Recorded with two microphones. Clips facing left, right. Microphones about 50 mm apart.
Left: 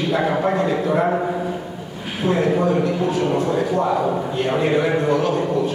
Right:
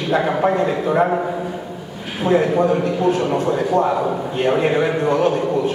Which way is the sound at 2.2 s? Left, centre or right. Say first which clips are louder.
Right 4 dB; right.